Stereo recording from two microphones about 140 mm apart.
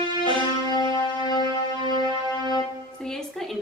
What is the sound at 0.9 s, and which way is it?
Music, 30° left (ahead or behind).